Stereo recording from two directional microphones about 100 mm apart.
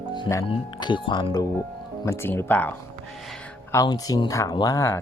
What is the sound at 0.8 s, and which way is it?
Speech, 50° left (ahead or behind).